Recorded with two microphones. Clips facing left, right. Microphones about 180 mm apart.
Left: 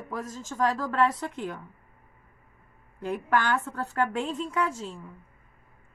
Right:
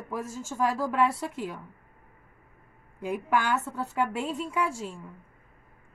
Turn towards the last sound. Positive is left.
turn(degrees=-10)  # may be behind; listen again after turning